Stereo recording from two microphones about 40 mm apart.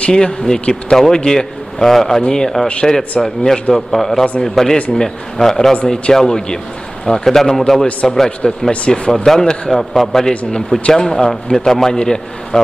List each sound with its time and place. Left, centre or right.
0.1 s a man's voice: centre
8.8 s speech: left
9.1 s a man's voice: centre